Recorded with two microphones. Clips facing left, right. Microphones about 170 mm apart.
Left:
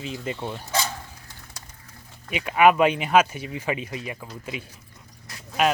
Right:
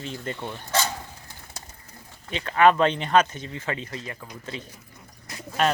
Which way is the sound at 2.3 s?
10° left (ahead or behind).